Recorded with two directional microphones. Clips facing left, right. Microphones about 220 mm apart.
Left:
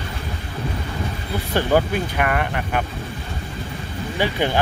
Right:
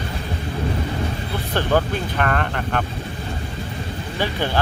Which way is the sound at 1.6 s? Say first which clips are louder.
Left 2 dB; 10° left (ahead or behind).